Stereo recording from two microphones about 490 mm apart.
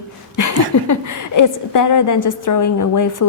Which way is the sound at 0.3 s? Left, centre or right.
Left.